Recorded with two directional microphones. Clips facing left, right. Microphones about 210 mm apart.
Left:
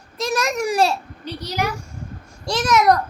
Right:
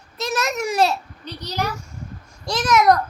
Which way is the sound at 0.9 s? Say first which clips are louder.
Left 1 dB; 10° left (ahead or behind).